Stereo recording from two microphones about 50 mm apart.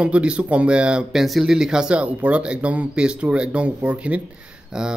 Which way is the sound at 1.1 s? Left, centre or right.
Centre.